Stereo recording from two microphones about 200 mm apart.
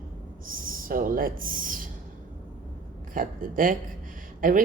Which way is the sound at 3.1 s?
45° right (ahead or behind).